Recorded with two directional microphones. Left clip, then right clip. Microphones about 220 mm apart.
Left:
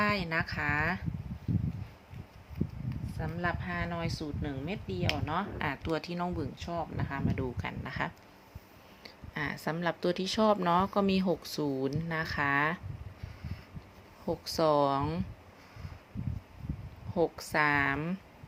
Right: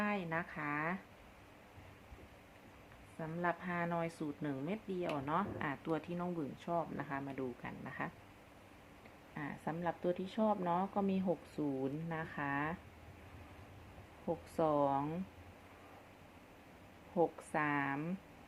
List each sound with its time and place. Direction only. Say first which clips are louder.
0.0 s a sound: left 8 dB; 25° left (ahead or behind)
3.2 s speech: left 4 dB; 15° left (ahead or behind)
6.7 s speech: left 1 dB; 15° left (ahead or behind)
7.6 s speech: left 8 dB; 30° left (ahead or behind)
9.3 s speech: left 9 dB; 35° left (ahead or behind)
14.3 s speech: left 7 dB; 30° left (ahead or behind)
17.2 s speech: left 6 dB; 25° left (ahead or behind)